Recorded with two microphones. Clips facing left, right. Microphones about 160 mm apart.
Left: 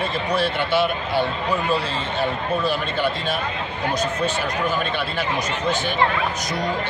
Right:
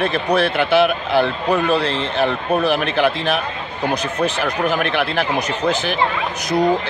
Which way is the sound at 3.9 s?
65° right (ahead or behind).